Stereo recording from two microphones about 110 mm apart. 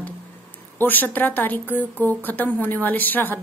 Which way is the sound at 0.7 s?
15° left (ahead or behind).